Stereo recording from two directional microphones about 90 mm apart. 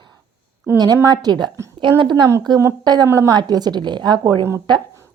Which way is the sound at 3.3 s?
50° right (ahead or behind).